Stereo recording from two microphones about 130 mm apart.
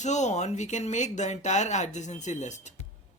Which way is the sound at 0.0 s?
65° left (ahead or behind).